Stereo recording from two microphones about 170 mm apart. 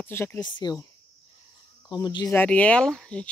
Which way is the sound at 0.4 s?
25° left (ahead or behind).